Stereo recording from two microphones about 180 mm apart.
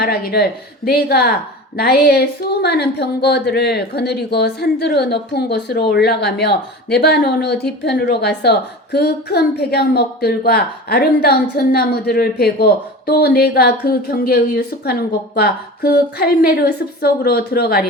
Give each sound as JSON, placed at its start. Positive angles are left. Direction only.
{"t": 0.0, "sound": "a woman's voice", "side_deg": 60}